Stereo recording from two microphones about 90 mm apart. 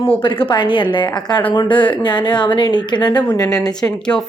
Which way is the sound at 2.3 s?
60° left (ahead or behind).